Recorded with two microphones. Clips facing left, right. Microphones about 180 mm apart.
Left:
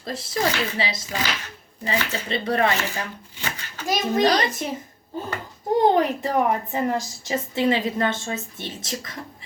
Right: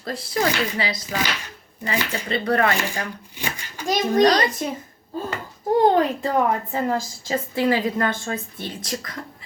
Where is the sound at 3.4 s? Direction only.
15° right (ahead or behind).